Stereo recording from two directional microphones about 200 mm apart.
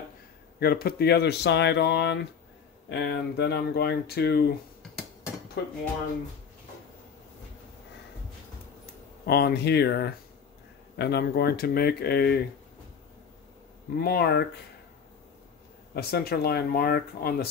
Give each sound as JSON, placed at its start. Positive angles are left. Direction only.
{"t": 0.6, "sound": "speech", "side_deg": 50}
{"t": 5.6, "sound": "speech", "side_deg": 55}
{"t": 9.2, "sound": "speech", "side_deg": 55}
{"t": 13.9, "sound": "speech", "side_deg": 50}
{"t": 15.9, "sound": "speech", "side_deg": 50}